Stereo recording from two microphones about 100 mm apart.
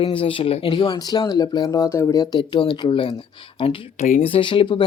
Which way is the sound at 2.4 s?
50° left (ahead or behind).